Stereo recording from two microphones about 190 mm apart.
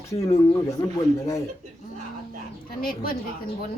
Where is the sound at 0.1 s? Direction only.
15° left (ahead or behind).